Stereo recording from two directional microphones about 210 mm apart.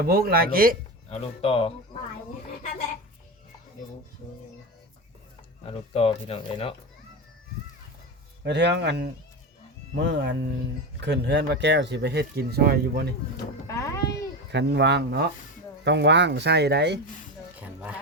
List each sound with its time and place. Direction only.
0.0 s speech: 45° right (ahead or behind)
1.1 s speech: 25° left (ahead or behind)
5.6 s speech: 25° left (ahead or behind)
8.4 s speech: 55° right (ahead or behind)
13.7 s speech: 15° left (ahead or behind)
14.5 s speech: 55° right (ahead or behind)
17.6 s a sound: 5° right (ahead or behind)